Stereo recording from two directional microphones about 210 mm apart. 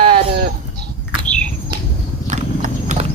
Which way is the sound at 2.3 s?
35° right (ahead or behind).